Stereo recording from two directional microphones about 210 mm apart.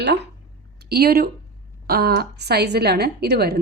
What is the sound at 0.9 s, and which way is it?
A woman's voice, 45° right (ahead or behind).